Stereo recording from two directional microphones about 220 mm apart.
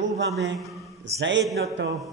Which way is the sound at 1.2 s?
55° right (ahead or behind).